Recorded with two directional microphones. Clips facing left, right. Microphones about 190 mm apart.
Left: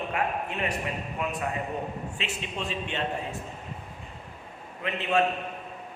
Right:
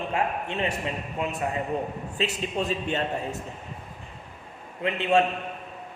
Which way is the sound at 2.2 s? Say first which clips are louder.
Right 10 dB; 40° right (ahead or behind).